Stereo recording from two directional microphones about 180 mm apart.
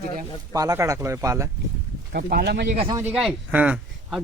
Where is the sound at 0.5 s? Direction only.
15° right (ahead or behind).